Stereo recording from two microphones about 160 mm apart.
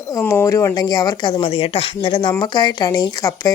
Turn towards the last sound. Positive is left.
turn(degrees=20)  # may be behind; listen again after turning